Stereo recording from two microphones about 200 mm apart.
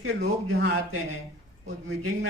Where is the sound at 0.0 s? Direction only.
90° right.